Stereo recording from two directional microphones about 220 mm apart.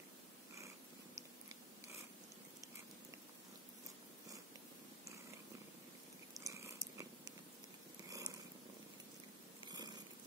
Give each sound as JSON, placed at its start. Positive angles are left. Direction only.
{"t": 6.4, "sound": "a sound", "side_deg": -15}
{"t": 8.1, "sound": "purr", "side_deg": -15}
{"t": 9.7, "sound": "purr", "side_deg": -20}